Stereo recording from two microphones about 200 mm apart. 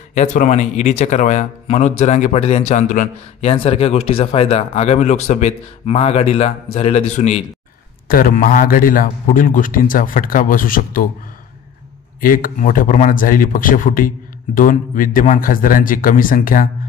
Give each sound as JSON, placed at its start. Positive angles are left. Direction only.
{"t": 0.1, "sound": "speech", "side_deg": 35}
{"t": 12.2, "sound": "speech", "side_deg": 45}